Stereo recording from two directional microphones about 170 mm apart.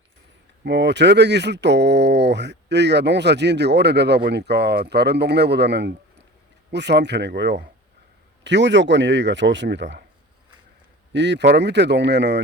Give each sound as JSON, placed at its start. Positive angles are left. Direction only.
{"t": 0.6, "sound": "speech", "side_deg": -90}
{"t": 11.1, "sound": "speech", "side_deg": -90}